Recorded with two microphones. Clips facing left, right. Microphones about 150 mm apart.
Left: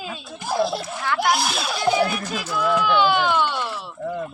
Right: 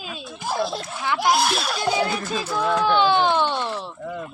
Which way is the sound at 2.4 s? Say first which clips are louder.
Even; 30° right (ahead or behind).